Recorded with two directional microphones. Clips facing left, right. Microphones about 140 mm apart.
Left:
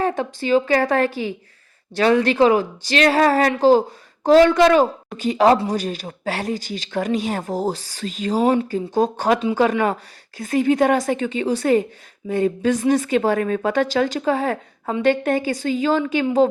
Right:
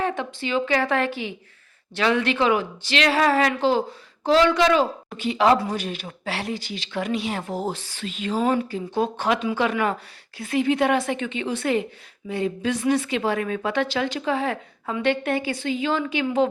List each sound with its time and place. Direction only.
0.0 s speech: 40° left (ahead or behind)